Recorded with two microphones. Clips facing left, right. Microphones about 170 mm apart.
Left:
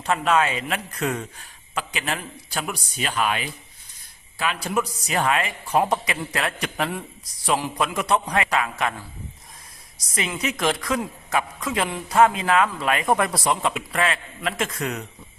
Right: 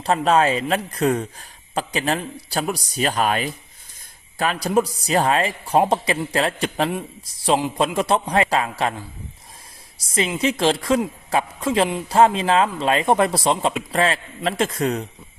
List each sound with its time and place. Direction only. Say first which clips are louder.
0.0 s a man's voice: right 4 dB; 35° right (ahead or behind)
10.1 s a woman's voice: right 6 dB; 30° right (ahead or behind)